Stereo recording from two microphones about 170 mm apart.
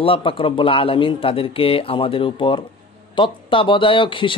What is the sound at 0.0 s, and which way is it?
A man's voice, 30° left (ahead or behind).